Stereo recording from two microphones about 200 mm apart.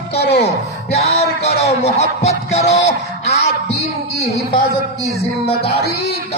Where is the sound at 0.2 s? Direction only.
55° left (ahead or behind).